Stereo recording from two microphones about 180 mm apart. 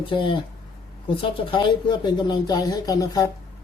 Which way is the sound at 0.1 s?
25° left (ahead or behind).